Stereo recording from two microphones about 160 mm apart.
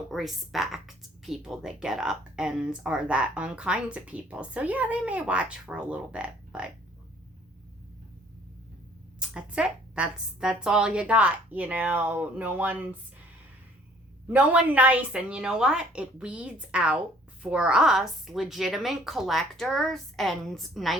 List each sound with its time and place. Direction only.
0.1 s a woman's voice: centre (ahead or behind)
9.1 s speech: 5° right (ahead or behind)
14.3 s a woman's voice: 10° right (ahead or behind)